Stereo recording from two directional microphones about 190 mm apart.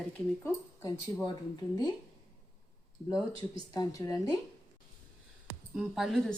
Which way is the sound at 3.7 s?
20° left (ahead or behind).